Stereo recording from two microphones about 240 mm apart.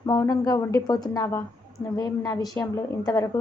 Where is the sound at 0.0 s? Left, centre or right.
Centre.